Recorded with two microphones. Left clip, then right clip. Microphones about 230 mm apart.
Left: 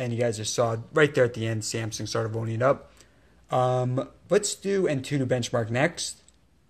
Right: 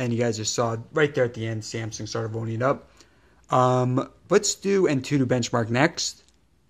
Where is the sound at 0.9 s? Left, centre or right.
Centre; by 6.1 s right.